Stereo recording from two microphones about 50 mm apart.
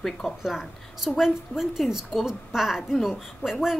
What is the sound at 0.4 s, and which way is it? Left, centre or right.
A woman's voice, centre.